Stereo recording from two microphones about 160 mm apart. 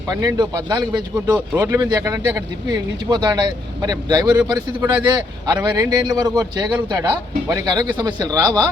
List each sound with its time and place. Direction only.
0.1 s speech: 25° right (ahead or behind)
4.5 s a man's voice: 15° right (ahead or behind)
6.4 s a man's voice: 10° right (ahead or behind)